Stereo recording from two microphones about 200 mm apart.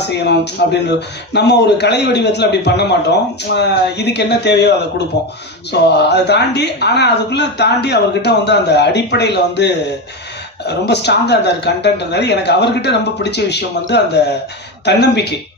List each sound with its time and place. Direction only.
0.0 s a woman's voice: 55° left (ahead or behind)